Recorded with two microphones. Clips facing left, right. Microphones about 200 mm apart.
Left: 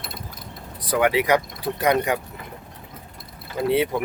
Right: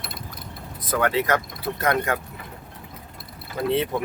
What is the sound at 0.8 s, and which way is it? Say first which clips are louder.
Speech: left 2 dB; 15° left (ahead or behind).